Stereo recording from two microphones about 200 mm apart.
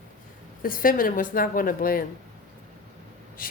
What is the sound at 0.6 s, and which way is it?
A woman's voice, 45° left (ahead or behind).